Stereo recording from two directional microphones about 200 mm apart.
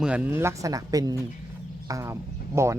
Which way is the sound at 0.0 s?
10° right (ahead or behind).